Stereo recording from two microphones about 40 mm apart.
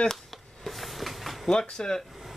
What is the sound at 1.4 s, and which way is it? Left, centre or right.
Speech, centre.